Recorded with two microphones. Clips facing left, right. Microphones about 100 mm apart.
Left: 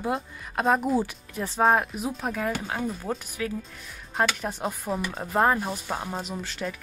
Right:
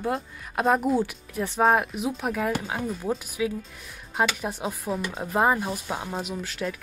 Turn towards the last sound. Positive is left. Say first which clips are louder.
# right 2 dB
turn(degrees=0)  # may be behind; listen again after turning